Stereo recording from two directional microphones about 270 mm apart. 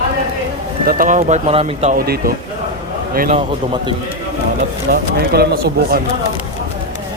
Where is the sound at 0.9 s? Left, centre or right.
Right.